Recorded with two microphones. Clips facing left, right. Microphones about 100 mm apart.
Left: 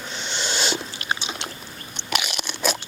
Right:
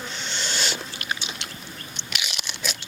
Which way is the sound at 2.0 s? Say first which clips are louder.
Left 8 dB; 50° left (ahead or behind).